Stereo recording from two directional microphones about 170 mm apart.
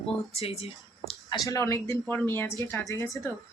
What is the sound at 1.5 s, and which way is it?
Speech, 20° left (ahead or behind).